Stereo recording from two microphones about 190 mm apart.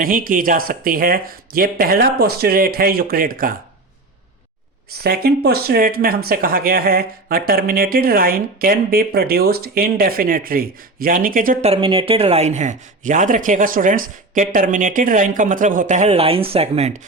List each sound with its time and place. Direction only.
0.0 s speech: 50° right (ahead or behind)
5.0 s speech: 55° right (ahead or behind)
11.7 s speech: 30° right (ahead or behind)